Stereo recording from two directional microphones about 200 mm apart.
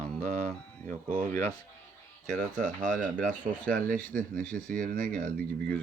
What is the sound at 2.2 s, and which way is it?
Speech, 40° right (ahead or behind).